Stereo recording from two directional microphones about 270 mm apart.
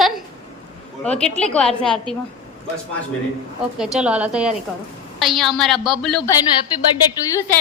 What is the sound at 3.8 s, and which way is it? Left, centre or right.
A woman's voice, centre.